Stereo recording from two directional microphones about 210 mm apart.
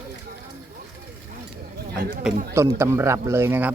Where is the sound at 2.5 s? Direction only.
15° right (ahead or behind).